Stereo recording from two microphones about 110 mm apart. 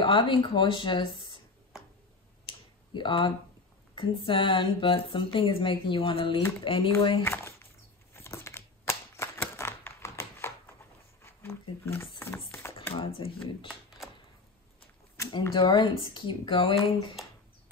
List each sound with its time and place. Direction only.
0.0 s speech: 50° left (ahead or behind)
2.4 s finger snapping: 50° left (ahead or behind)
3.9 s speech: 50° left (ahead or behind)
8.1 s typewriter: 25° left (ahead or behind)
11.2 s a sound: 25° left (ahead or behind)
12.9 s speech: 55° left (ahead or behind)
13.7 s a sound: centre (ahead or behind)
15.7 s speech: 55° left (ahead or behind)